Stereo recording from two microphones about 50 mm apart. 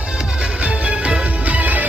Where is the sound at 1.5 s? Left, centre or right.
Right.